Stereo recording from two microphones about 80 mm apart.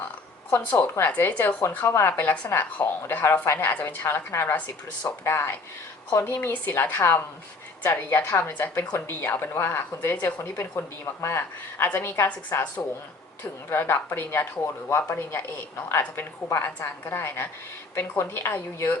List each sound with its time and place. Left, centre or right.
0.5 s a woman's voice: left
13.7 s a woman's voice: left